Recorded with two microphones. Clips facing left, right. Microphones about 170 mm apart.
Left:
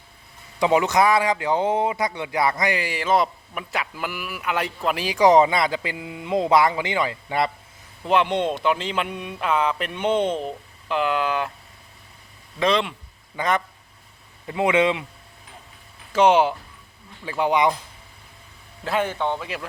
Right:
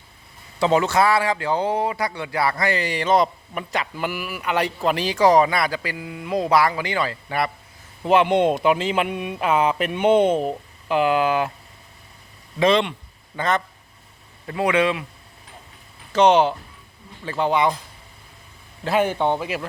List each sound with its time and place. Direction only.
0.6 s speech: 15° left (ahead or behind)
8.0 s speech: 5° right (ahead or behind)
12.5 s speech: centre (ahead or behind)
13.3 s speech: 10° left (ahead or behind)
16.1 s speech: 10° left (ahead or behind)
18.9 s speech: 10° right (ahead or behind)